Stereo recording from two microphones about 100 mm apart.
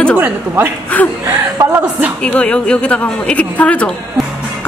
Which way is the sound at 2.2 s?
10° left (ahead or behind).